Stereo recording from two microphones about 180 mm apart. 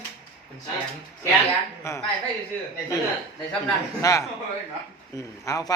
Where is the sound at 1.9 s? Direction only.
15° left (ahead or behind).